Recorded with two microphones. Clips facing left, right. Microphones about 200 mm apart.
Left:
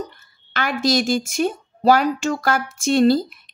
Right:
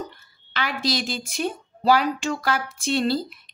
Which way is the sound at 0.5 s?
50° left (ahead or behind).